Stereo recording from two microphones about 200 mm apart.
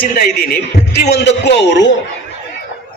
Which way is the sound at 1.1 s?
55° left (ahead or behind).